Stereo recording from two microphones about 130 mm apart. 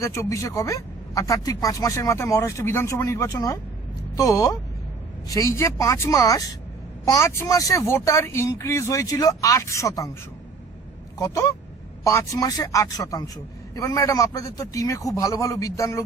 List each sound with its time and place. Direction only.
0.0 s a man's voice: 25° left (ahead or behind)
12.0 s a man's voice: 25° left (ahead or behind)